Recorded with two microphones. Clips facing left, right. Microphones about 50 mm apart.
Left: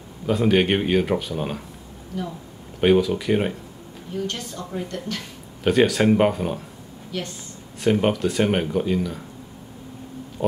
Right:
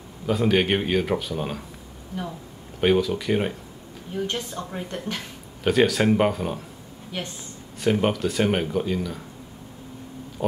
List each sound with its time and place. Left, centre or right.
0.3 s speech: centre
2.1 s speech: centre
2.8 s speech: centre
4.3 s a woman's voice: right
5.6 s speech: centre
7.1 s a woman's voice: right
7.8 s speech: centre